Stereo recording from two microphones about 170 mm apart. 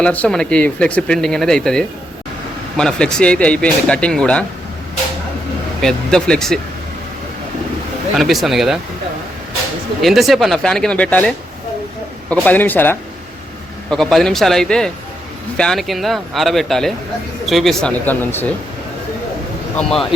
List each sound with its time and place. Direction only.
0.0 s speech: 5° left (ahead or behind)
5.8 s speech: 5° left (ahead or behind)
8.1 s speech: centre (ahead or behind)
10.0 s speech: centre (ahead or behind)
19.7 s speech: 5° left (ahead or behind)